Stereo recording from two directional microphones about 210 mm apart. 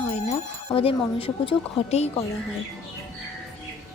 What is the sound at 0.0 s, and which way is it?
Speech, 30° left (ahead or behind).